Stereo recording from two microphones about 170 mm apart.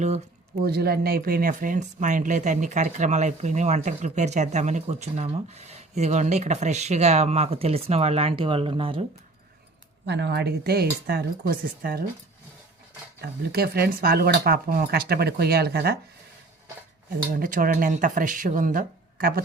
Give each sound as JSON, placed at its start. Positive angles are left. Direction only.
{"t": 0.6, "sound": "speech", "side_deg": -65}
{"t": 10.1, "sound": "speech", "side_deg": -80}
{"t": 13.2, "sound": "speech", "side_deg": -65}
{"t": 17.3, "sound": "speech", "side_deg": -55}